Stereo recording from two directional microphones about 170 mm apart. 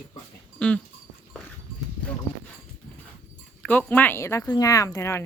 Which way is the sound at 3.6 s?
10° left (ahead or behind).